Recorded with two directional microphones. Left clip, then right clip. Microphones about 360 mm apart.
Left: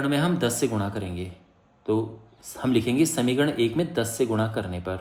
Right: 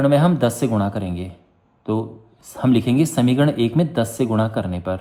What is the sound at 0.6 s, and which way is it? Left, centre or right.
Speech, centre.